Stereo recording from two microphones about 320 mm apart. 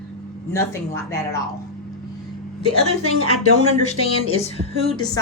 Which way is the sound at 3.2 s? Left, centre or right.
Left.